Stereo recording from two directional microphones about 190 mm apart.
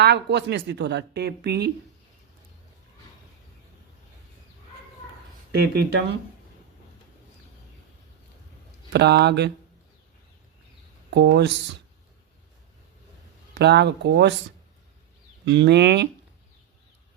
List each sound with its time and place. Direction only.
0.0 s speech: 60° right (ahead or behind)
5.5 s speech: 60° right (ahead or behind)
8.9 s speech: 60° right (ahead or behind)
11.1 s speech: 65° right (ahead or behind)
13.5 s speech: 65° right (ahead or behind)
15.4 s speech: 65° right (ahead or behind)